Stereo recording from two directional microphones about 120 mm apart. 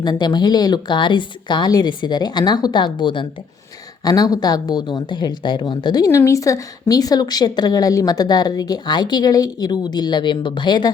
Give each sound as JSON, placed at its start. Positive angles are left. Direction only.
{"t": 0.0, "sound": "speech", "side_deg": 35}